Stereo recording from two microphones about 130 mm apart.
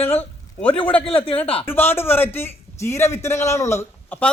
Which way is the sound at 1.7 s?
15° left (ahead or behind).